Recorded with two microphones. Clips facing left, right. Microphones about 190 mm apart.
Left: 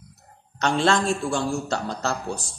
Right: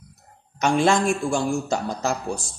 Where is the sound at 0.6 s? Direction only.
15° right (ahead or behind).